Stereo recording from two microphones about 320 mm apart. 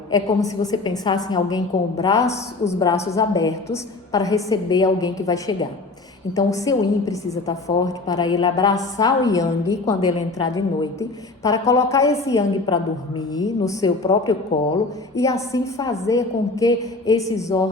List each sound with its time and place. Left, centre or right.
0.1 s a woman's voice: centre